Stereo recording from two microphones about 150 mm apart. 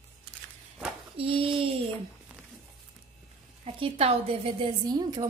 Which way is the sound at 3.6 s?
40° right (ahead or behind).